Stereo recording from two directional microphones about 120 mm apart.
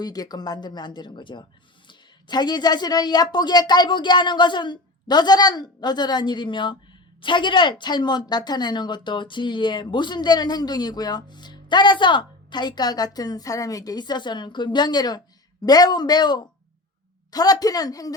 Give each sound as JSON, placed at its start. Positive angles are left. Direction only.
{"t": 0.0, "sound": "a woman's voice", "side_deg": 35}